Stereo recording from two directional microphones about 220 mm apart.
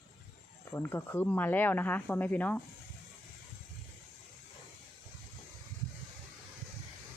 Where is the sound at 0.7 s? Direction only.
10° left (ahead or behind).